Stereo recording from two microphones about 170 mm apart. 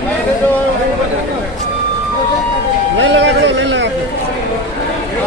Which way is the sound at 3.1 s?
90° right.